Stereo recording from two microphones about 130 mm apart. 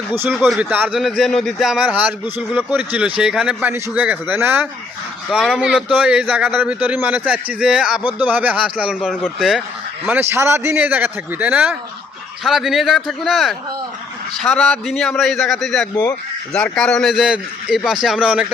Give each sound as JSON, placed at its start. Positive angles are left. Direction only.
{"t": 0.1, "sound": "a man's voice", "side_deg": -20}
{"t": 0.3, "sound": "a man's voice", "side_deg": 0}
{"t": 0.7, "sound": "speech", "side_deg": -15}
{"t": 0.9, "sound": "a man's voice", "side_deg": 0}
{"t": 10.1, "sound": "a man's voice", "side_deg": -20}